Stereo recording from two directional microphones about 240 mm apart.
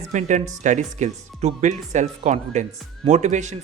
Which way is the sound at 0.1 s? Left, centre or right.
Right.